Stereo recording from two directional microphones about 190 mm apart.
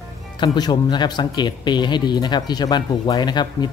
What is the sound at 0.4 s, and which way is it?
Speech, 25° left (ahead or behind).